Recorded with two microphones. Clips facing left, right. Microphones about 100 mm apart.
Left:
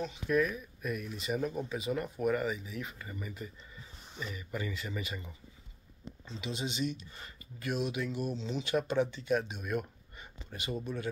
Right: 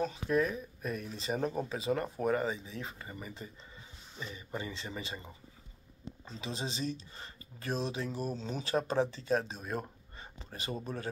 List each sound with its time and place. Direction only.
0.3 s speech: 30° right (ahead or behind)